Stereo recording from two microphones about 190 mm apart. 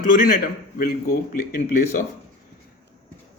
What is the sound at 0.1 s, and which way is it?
Speech, 45° left (ahead or behind).